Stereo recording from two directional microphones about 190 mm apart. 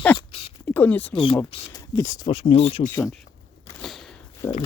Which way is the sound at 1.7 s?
15° left (ahead or behind).